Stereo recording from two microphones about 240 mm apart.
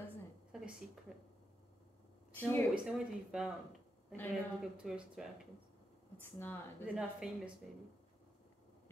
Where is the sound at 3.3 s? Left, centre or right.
Centre.